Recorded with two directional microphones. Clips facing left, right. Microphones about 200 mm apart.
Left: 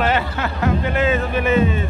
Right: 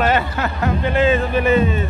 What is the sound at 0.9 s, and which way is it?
Speech, 30° right (ahead or behind).